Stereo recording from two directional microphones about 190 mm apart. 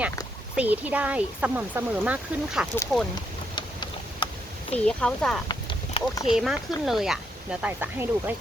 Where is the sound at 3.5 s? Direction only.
25° left (ahead or behind).